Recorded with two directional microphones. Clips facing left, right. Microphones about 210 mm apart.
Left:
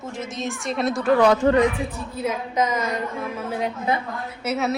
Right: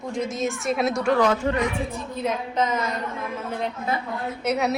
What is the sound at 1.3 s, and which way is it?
Speech, 40° left (ahead or behind).